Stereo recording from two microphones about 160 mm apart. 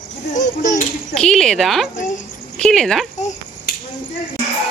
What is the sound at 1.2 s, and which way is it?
Speech, 5° left (ahead or behind).